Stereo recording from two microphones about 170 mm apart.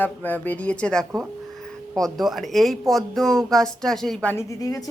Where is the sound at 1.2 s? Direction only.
Centre (ahead or behind).